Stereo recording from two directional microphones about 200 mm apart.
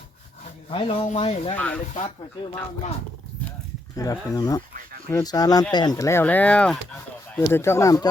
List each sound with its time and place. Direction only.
0.7 s speech: 25° left (ahead or behind)
1.5 s speech: 5° left (ahead or behind)
3.9 s speech: 15° left (ahead or behind)